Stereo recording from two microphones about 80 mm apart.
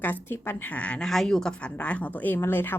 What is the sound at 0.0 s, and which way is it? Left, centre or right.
A woman's voice, left.